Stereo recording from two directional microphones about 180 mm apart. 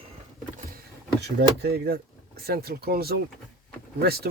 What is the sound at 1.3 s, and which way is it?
Speech, 65° right (ahead or behind).